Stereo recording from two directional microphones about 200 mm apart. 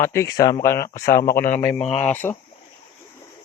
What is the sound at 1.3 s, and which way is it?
Speech, 45° left (ahead or behind).